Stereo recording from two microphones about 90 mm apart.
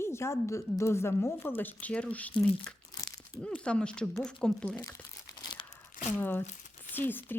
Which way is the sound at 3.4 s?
10° left (ahead or behind).